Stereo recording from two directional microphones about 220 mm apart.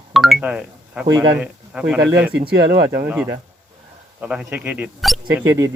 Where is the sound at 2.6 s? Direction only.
50° right (ahead or behind).